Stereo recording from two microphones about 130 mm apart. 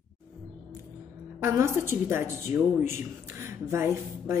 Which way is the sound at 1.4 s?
20° right (ahead or behind).